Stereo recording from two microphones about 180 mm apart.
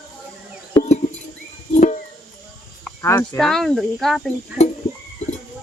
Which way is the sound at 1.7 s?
45° left (ahead or behind).